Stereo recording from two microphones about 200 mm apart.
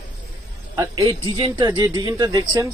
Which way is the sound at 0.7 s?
15° right (ahead or behind).